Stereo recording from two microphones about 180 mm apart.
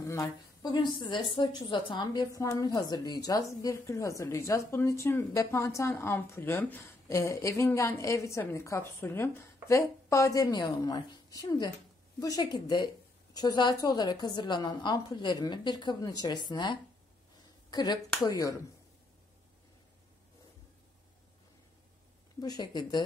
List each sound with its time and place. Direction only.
0.0 s a woman's voice: 20° left (ahead or behind)
22.4 s a woman's voice: 20° left (ahead or behind)